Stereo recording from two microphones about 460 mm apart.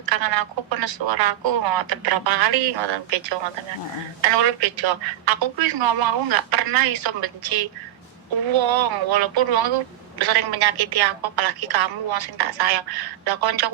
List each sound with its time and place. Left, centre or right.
0.0 s a woman's voice: right